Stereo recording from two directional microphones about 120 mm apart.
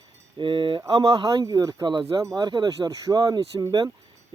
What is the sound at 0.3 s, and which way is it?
Speech, 40° right (ahead or behind).